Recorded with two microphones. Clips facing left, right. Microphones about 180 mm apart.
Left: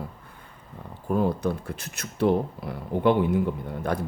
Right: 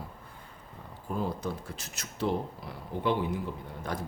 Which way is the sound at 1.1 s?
60° left (ahead or behind).